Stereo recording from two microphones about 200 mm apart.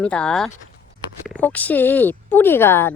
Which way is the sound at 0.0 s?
5° left (ahead or behind).